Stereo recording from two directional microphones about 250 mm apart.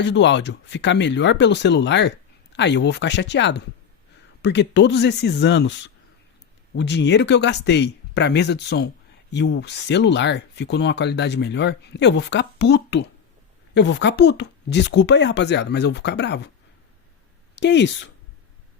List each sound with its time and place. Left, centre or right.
0.0 s speech: left
17.5 s speech: left